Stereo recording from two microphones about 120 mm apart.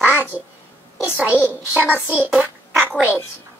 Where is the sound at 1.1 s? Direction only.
15° right (ahead or behind).